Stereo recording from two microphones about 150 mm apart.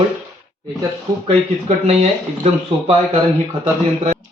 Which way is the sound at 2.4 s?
45° right (ahead or behind).